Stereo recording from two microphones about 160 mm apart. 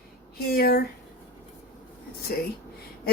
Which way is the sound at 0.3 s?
75° left (ahead or behind).